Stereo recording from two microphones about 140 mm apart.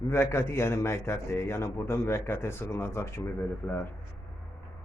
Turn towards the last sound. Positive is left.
turn(degrees=20)  # may be behind; listen again after turning